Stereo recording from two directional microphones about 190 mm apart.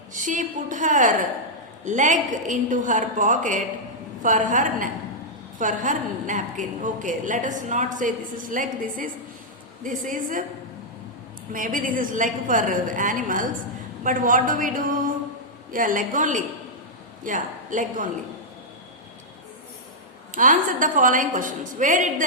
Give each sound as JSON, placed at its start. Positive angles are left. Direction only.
{"t": 0.1, "sound": "a woman's voice", "side_deg": -40}
{"t": 11.5, "sound": "a woman's voice", "side_deg": -45}
{"t": 20.3, "sound": "a woman's voice", "side_deg": -45}